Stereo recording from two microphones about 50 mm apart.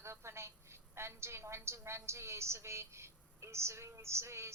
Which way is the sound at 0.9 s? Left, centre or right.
Right.